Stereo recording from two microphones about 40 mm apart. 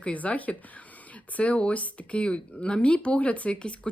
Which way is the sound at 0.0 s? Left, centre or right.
Left.